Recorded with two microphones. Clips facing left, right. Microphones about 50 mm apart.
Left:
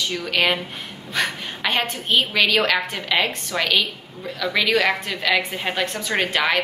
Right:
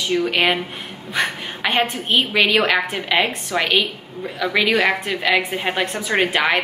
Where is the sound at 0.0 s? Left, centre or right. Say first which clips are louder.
Right 3 dB; centre.